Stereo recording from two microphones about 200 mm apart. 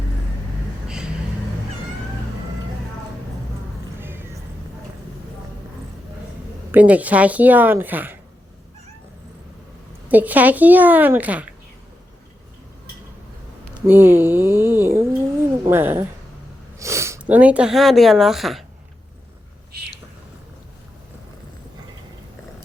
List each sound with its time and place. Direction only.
0.9 s a sound: 5° right (ahead or behind)
6.7 s speech: 5° right (ahead or behind)
10.1 s speech: 10° right (ahead or behind)
13.7 s speech: 10° right (ahead or behind)